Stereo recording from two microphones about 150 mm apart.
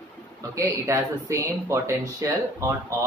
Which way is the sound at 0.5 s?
20° right (ahead or behind).